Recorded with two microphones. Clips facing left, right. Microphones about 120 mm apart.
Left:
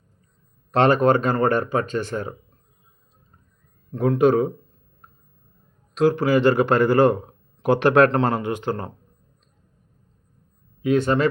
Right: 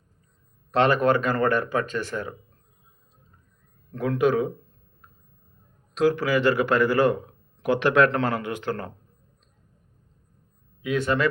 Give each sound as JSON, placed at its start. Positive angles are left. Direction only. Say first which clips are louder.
{"t": 0.8, "sound": "speech", "louder": "left 3 dB", "side_deg": 30}
{"t": 3.9, "sound": "speech", "louder": "left 4 dB", "side_deg": 30}
{"t": 6.1, "sound": "speech", "louder": "left 4 dB", "side_deg": 25}
{"t": 8.2, "sound": "speech", "louder": "left 4 dB", "side_deg": 25}
{"t": 10.8, "sound": "speech", "louder": "left 5 dB", "side_deg": 30}